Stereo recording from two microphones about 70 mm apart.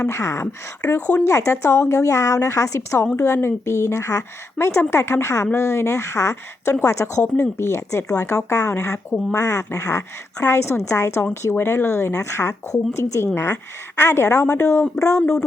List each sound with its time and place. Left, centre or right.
0.0 s a woman's voice: left
3.2 s a woman's voice: left
11.5 s a woman's voice: left
13.2 s speech: left
13.5 s a woman's voice: left